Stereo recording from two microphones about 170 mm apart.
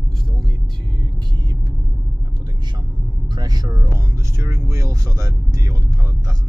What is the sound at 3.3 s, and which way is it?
Speech, 25° right (ahead or behind).